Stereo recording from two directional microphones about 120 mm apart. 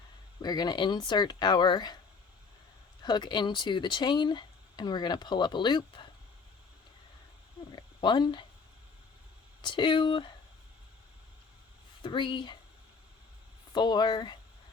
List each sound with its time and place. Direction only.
0.4 s speech: 35° left (ahead or behind)
3.0 s speech: 40° left (ahead or behind)
7.7 s a sound: 40° left (ahead or behind)
9.6 s speech: 40° left (ahead or behind)
12.0 s speech: 40° left (ahead or behind)
13.7 s speech: 40° left (ahead or behind)